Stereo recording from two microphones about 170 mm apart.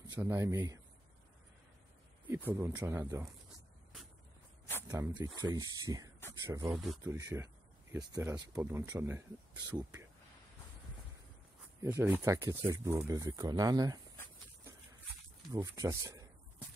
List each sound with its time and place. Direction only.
0.1 s speech: 20° right (ahead or behind)
2.5 s speech: 20° right (ahead or behind)
4.8 s a sound: 20° right (ahead or behind)
5.2 s speech: 25° right (ahead or behind)
11.8 s speech: 15° right (ahead or behind)
15.5 s speech: 20° right (ahead or behind)